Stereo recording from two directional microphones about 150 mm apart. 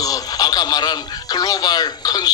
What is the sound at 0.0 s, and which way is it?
Speech, 25° left (ahead or behind).